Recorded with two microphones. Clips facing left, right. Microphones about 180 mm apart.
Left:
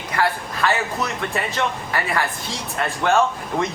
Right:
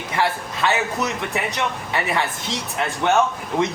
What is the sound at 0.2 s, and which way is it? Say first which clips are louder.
A man's voice: left 1 dB; 20° right (ahead or behind).